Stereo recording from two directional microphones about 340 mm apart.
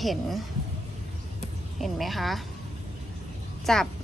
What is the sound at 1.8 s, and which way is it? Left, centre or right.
Speech, centre.